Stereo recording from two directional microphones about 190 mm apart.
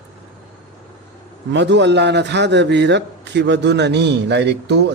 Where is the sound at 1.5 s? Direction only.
65° right (ahead or behind).